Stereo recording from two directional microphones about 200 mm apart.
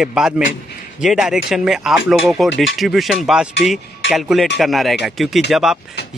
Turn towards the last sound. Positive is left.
turn(degrees=0)  # may be behind; listen again after turning